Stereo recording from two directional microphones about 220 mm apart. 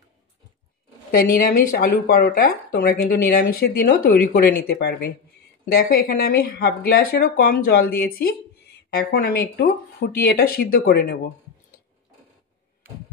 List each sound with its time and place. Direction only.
1.1 s speech: 40° left (ahead or behind)